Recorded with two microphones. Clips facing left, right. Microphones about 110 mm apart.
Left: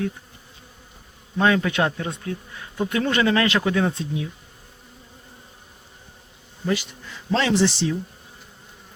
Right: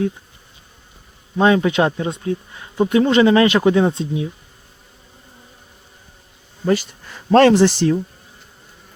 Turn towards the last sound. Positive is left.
turn(degrees=-50)  # may be behind; listen again after turning